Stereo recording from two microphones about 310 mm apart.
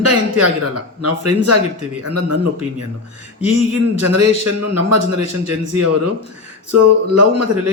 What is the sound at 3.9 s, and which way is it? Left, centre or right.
A man's voice, right.